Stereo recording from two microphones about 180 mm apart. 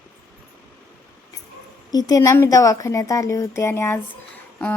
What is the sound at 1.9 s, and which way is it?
Speech, 20° left (ahead or behind).